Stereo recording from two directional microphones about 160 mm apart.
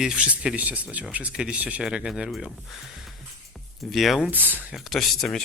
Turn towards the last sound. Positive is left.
turn(degrees=0)  # may be behind; listen again after turning